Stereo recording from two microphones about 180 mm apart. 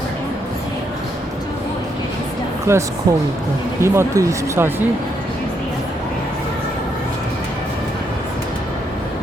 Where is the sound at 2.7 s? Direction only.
15° right (ahead or behind).